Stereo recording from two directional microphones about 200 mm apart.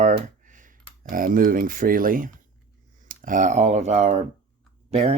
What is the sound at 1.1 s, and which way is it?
Speech, 45° right (ahead or behind).